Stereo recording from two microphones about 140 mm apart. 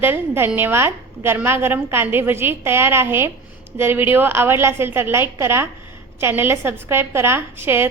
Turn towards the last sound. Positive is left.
turn(degrees=-15)  # may be behind; listen again after turning